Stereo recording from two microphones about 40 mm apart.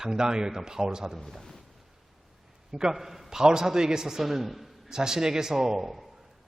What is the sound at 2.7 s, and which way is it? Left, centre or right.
A man's voice, centre.